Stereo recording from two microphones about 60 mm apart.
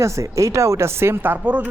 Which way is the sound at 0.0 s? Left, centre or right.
Right.